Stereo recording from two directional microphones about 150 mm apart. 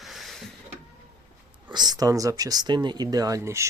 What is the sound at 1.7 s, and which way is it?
Speech, 30° right (ahead or behind).